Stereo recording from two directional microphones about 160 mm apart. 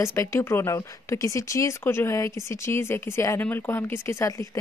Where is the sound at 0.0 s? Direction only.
15° left (ahead or behind).